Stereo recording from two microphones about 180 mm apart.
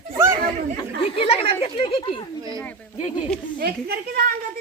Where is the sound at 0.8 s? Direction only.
30° left (ahead or behind).